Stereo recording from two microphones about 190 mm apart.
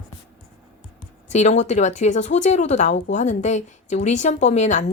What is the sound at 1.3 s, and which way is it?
Speech, 35° left (ahead or behind).